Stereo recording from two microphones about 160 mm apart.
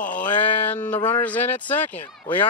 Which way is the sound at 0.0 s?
55° left (ahead or behind).